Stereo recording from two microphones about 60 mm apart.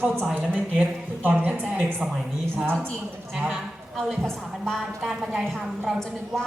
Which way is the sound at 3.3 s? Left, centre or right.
Centre.